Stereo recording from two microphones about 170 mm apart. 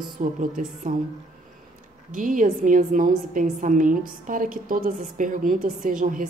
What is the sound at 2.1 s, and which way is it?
A woman's voice, 50° right (ahead or behind).